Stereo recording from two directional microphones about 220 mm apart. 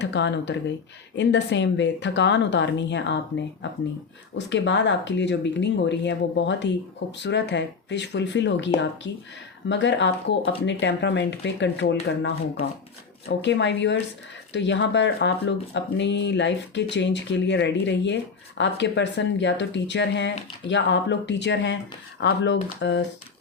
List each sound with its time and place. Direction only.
0.0 s speech: 50° left (ahead or behind)
13.2 s speech: 55° left (ahead or behind)